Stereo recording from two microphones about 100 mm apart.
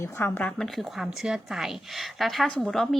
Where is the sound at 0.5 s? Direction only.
5° left (ahead or behind).